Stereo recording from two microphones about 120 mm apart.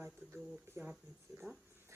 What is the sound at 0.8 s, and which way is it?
Speech, 20° right (ahead or behind).